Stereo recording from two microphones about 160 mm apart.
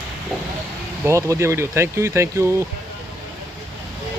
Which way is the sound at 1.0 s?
15° right (ahead or behind).